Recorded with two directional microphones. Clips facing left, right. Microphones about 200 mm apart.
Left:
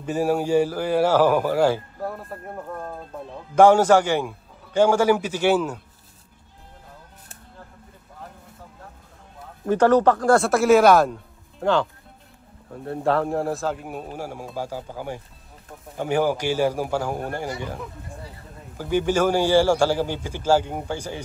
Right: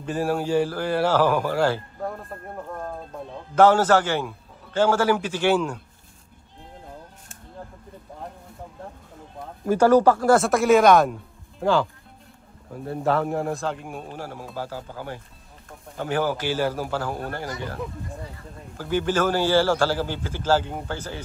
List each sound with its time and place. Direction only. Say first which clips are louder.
0.0 s a man's voice: left 2 dB; 10° left (ahead or behind)
3.5 s a man's voice: left 2 dB; 10° left (ahead or behind)
9.7 s a man's voice: even; 10° right (ahead or behind); by 17.7 s 15° left (ahead or behind)
18.8 s a man's voice: left 2 dB; 15° left (ahead or behind)